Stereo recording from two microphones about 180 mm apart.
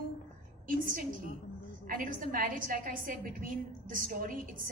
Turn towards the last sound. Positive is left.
turn(degrees=-50)  # may be behind; listen again after turning